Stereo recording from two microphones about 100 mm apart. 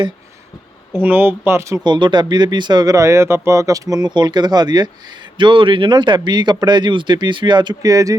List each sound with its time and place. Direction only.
0.9 s speech: 20° right (ahead or behind)
1.8 s speech: 50° right (ahead or behind)
5.4 s speech: 55° right (ahead or behind)
7.9 s speech: 35° right (ahead or behind)